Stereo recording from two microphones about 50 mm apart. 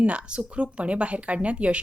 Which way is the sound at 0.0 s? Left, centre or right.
Right.